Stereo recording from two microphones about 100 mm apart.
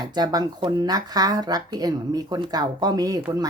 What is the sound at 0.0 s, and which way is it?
A woman's voice, 45° right (ahead or behind).